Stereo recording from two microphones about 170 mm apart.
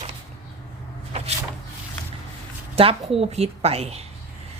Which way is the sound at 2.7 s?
35° right (ahead or behind).